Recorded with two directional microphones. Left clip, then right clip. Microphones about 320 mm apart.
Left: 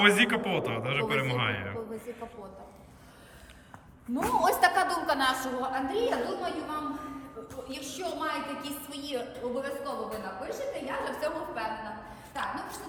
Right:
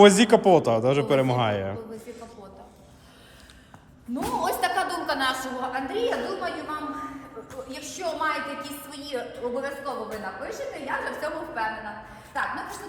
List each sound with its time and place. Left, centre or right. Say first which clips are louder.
0.0 s speech: right 8 dB; centre
4.1 s a woman's voice: left 1 dB; centre